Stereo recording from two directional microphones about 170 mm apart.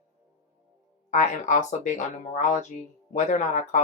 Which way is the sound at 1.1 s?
45° left (ahead or behind).